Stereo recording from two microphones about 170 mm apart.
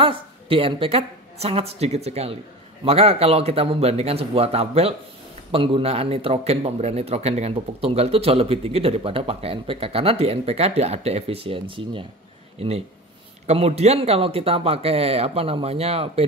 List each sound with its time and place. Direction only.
0.0 s a man's voice: 30° right (ahead or behind)